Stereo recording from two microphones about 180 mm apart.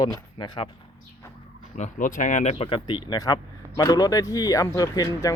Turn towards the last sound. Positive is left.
turn(degrees=20)  # may be behind; listen again after turning